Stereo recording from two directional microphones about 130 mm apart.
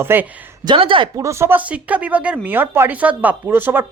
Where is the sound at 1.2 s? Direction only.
20° right (ahead or behind).